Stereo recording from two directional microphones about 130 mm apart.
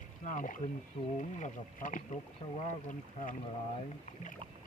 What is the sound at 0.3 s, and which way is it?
Speech, 85° left.